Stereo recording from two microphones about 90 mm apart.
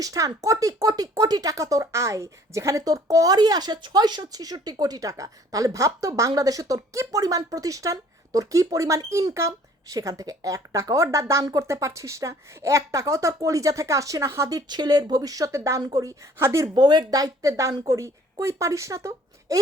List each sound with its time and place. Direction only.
0.0 s a woman's voice: 40° right (ahead or behind)
14.7 s a woman's voice: 50° right (ahead or behind); by 16.6 s 35° right (ahead or behind)
16.7 s a woman's voice: 55° right (ahead or behind); by 19.5 s 35° right (ahead or behind)